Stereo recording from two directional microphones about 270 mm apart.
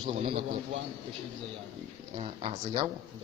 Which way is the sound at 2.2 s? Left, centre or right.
Centre.